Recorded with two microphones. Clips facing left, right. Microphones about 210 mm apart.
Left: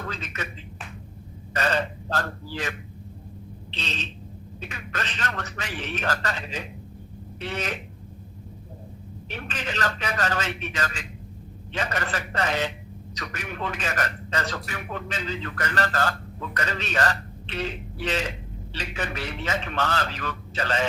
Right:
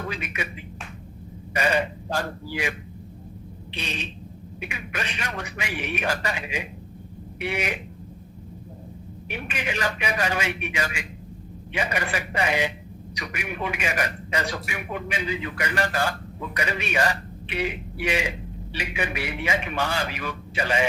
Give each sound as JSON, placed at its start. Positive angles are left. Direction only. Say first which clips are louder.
{"t": 0.1, "sound": "a man's voice", "louder": "right 2 dB", "side_deg": -10}
{"t": 3.7, "sound": "a sound", "louder": "right 2 dB", "side_deg": -10}
{"t": 4.6, "sound": "a man's voice", "louder": "right 2 dB", "side_deg": -10}
{"t": 9.3, "sound": "a man's voice", "louder": "right 2 dB", "side_deg": -10}